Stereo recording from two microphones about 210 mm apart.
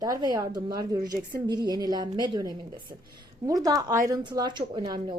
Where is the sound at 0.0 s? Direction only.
20° right (ahead or behind).